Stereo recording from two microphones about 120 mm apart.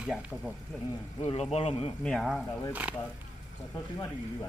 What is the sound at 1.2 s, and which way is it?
Speech, 60° left (ahead or behind).